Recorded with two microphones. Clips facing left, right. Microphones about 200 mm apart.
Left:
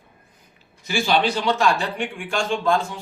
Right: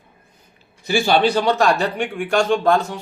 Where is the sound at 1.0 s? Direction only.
50° right (ahead or behind).